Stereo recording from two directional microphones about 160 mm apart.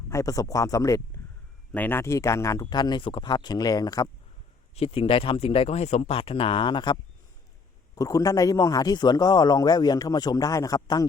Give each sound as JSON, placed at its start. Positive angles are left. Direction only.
{"t": 0.1, "sound": "a man's voice", "side_deg": 20}
{"t": 4.7, "sound": "a man's voice", "side_deg": 40}